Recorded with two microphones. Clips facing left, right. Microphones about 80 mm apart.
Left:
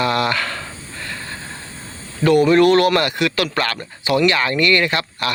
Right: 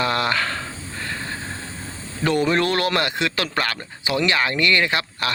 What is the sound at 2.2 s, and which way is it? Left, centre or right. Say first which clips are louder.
Speech: left 7 dB; right.